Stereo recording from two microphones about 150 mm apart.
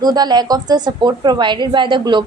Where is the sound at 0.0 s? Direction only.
25° right (ahead or behind).